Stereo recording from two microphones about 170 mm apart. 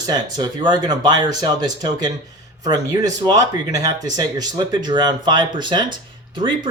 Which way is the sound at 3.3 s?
20° right (ahead or behind).